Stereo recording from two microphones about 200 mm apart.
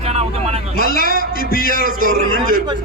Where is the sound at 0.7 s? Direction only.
50° left (ahead or behind).